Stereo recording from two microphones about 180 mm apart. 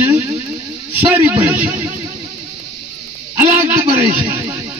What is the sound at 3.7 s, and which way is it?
Speech, 15° right (ahead or behind).